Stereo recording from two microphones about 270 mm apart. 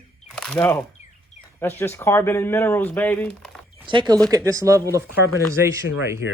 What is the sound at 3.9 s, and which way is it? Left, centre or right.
Speech, centre.